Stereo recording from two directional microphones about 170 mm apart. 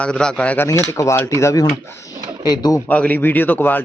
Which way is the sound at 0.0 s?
5° left (ahead or behind).